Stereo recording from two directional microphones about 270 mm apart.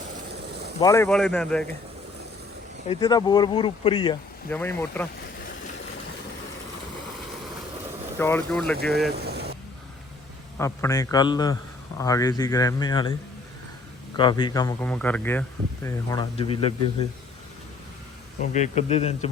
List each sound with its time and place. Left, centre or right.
0.8 s speech: centre
2.9 s speech: centre
4.5 s speech: centre
8.2 s speech: centre
9.1 s vehicle: right
10.6 s speech: centre
14.2 s speech: centre
18.5 s speech: left